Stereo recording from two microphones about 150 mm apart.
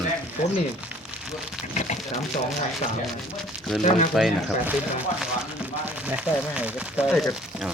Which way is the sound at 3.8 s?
50° left (ahead or behind).